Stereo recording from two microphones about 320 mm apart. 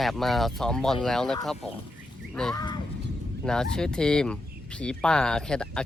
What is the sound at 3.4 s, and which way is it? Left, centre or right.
Speech, centre.